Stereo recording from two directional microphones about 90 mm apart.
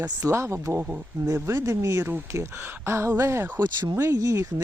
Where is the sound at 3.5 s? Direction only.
50° right (ahead or behind).